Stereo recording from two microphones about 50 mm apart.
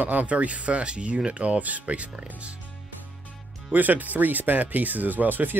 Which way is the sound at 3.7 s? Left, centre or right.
Right.